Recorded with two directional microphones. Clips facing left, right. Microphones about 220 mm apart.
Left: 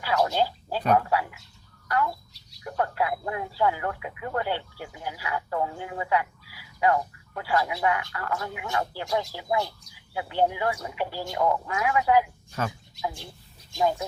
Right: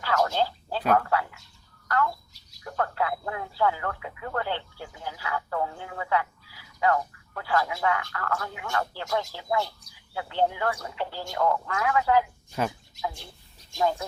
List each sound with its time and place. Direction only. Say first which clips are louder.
0.0 s a sound: left 1 dB; 15° left (ahead or behind)
1.9 s bird: even; 10° left (ahead or behind)
2.6 s speech: left 1 dB; 15° left (ahead or behind)